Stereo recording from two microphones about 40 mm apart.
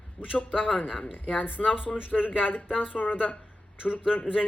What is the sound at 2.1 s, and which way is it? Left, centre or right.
Speech, centre.